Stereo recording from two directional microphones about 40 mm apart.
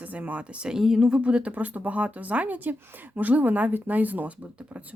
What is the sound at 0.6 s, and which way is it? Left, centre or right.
Speech, centre.